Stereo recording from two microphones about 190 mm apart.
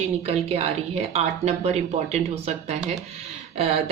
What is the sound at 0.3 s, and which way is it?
Speech, 30° right (ahead or behind).